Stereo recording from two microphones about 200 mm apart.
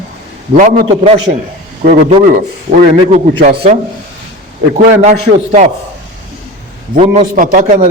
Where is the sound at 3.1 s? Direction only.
30° right (ahead or behind).